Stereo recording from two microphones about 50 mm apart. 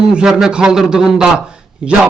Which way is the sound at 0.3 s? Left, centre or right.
Centre.